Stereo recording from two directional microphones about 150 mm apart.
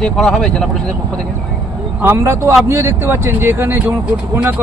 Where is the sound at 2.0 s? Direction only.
20° right (ahead or behind).